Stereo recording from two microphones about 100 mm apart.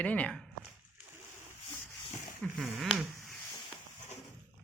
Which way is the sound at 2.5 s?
Centre (ahead or behind).